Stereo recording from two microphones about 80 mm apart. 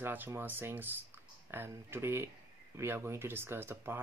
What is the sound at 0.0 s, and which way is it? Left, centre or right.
Speech, right.